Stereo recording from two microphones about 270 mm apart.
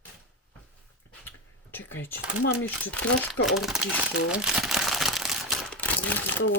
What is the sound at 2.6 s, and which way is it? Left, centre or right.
Speech, centre.